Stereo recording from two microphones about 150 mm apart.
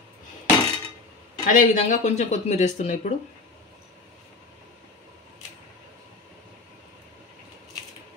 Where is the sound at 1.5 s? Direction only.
55° left (ahead or behind).